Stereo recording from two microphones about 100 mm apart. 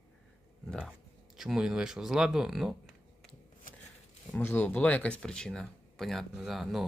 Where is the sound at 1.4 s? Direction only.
5° right (ahead or behind).